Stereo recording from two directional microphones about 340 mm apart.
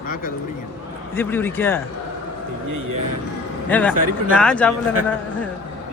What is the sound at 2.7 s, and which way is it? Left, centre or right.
Speech, right.